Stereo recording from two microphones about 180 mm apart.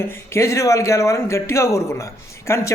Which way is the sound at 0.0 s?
15° left (ahead or behind).